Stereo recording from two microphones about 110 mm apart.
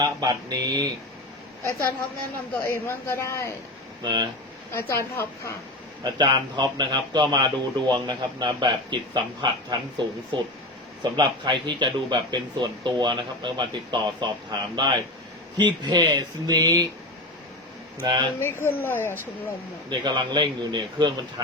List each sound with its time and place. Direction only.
0.0 s speech: 40° right (ahead or behind)
2.6 s a woman's voice: 25° left (ahead or behind)
4.0 s speech: 40° right (ahead or behind)
4.7 s a woman's voice: 25° left (ahead or behind)
6.0 s speech: 40° right (ahead or behind)
18.0 s speech: 45° right (ahead or behind)
18.6 s a woman's voice: 20° left (ahead or behind)
19.9 s speech: 40° right (ahead or behind)